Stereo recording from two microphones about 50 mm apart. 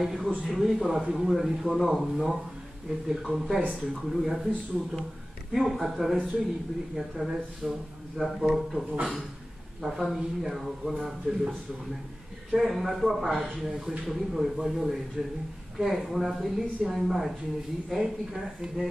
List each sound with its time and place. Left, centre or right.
0.0 s speech: centre
7.2 s speech: centre
15.2 s speech: right
15.8 s speech: centre